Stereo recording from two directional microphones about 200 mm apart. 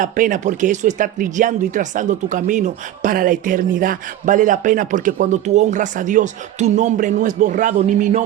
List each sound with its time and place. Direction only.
0.0 s speech: 40° right (ahead or behind)